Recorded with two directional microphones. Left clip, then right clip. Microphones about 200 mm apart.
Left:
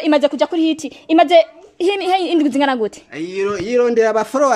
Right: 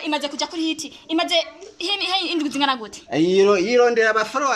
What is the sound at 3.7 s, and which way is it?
Speech, 20° left (ahead or behind).